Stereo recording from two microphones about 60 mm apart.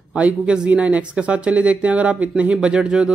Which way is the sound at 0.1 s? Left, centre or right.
Centre.